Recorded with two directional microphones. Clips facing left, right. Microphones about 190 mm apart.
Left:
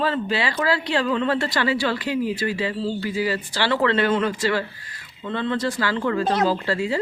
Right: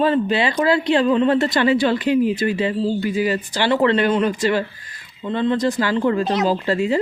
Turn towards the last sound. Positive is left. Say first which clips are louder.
# right 4 dB
turn(degrees=-20)  # may be behind; listen again after turning